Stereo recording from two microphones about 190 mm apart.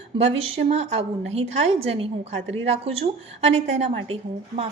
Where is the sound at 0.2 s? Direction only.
30° right (ahead or behind).